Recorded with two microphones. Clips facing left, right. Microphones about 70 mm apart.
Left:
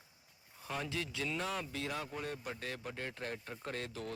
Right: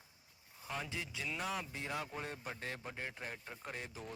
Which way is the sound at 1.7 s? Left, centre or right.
Centre.